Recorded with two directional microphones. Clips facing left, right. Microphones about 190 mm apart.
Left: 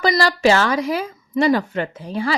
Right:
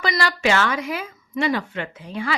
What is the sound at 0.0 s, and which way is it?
Speech, 35° left (ahead or behind).